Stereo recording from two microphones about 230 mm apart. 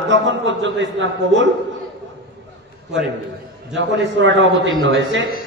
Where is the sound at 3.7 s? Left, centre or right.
Right.